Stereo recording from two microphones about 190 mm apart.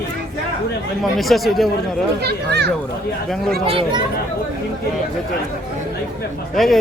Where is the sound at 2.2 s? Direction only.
60° right (ahead or behind).